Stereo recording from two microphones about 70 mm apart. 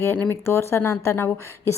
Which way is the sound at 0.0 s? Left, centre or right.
Left.